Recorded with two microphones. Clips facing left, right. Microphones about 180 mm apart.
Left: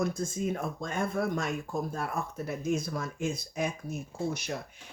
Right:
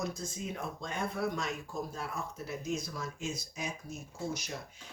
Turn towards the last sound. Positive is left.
turn(degrees=60)  # may be behind; listen again after turning